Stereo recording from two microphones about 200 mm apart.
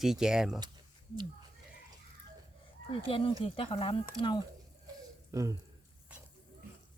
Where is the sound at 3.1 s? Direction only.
25° left (ahead or behind).